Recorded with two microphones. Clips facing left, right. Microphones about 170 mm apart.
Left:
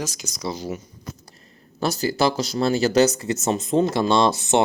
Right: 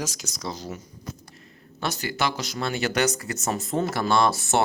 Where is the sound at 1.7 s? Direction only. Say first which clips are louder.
Left 6 dB; 35° left (ahead or behind).